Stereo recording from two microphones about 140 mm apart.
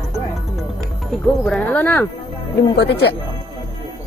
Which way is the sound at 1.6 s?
15° left (ahead or behind).